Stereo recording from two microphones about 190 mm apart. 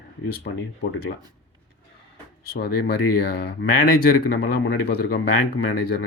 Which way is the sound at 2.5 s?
55° left (ahead or behind).